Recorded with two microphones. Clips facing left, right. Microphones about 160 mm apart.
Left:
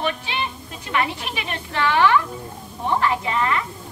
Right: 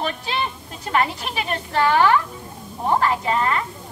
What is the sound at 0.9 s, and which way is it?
A woman's voice, 40° right (ahead or behind).